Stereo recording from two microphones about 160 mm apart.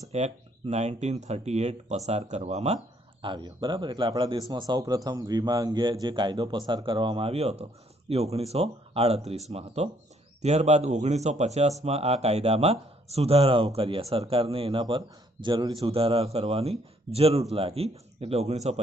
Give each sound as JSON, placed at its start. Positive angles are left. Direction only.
{"t": 0.1, "sound": "speech", "side_deg": -45}